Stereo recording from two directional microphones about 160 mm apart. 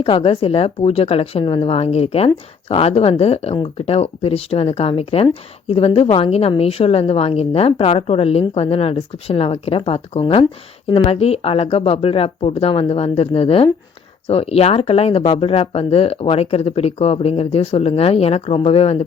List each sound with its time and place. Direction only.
0.0 s speech: 35° left (ahead or behind)